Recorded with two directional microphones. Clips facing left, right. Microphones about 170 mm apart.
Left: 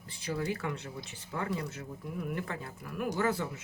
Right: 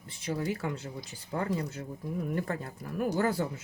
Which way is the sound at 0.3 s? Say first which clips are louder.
Right 1 dB; 30° right (ahead or behind).